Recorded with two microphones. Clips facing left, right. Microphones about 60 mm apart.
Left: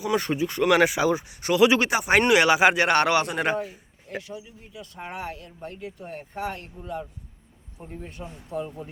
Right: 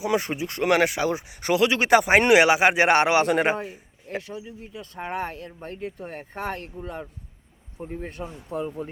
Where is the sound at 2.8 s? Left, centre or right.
Right.